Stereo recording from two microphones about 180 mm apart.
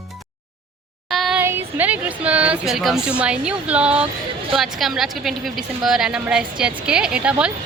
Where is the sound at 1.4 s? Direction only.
10° right (ahead or behind).